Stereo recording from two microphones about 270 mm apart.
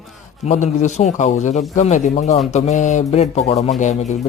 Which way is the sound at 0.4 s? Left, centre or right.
Left.